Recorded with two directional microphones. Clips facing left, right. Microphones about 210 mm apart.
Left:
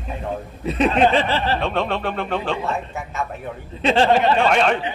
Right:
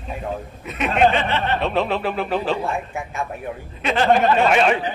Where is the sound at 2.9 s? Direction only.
15° right (ahead or behind).